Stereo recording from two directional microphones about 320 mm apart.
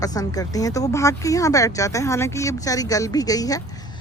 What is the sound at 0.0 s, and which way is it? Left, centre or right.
Speech, centre.